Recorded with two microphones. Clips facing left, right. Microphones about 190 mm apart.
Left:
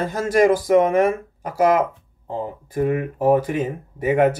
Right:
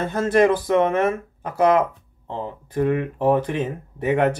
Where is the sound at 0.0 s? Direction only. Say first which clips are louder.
Even; 10° left (ahead or behind).